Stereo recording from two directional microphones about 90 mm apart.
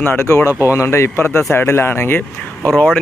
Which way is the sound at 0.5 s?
25° right (ahead or behind).